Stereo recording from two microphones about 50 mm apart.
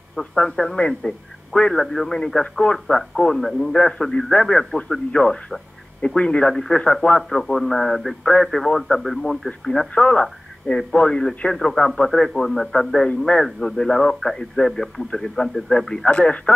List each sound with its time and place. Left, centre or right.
0.4 s a man's voice: centre
6.5 s a man's voice: centre
6.8 s a man's voice: centre
9.9 s speech: left
10.7 s a man's voice: centre
16.1 s speech: left